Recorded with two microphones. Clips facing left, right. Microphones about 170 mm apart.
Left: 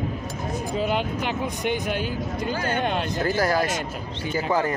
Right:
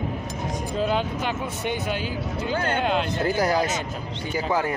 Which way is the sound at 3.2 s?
20° right (ahead or behind).